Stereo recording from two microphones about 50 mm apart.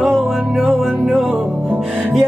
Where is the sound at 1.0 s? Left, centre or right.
Centre.